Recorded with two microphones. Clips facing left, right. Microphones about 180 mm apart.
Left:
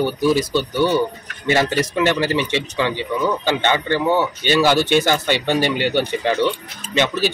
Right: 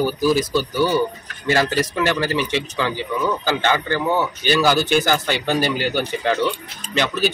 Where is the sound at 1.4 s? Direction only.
20° left (ahead or behind).